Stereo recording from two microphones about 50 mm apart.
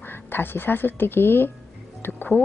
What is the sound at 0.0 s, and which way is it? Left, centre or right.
A woman's voice, left.